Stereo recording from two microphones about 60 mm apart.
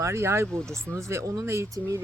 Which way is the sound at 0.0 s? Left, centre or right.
Right.